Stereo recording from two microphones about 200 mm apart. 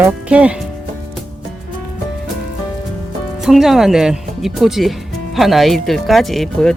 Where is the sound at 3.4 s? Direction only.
Centre (ahead or behind).